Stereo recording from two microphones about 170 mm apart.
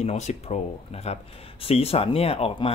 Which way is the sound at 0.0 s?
40° left (ahead or behind).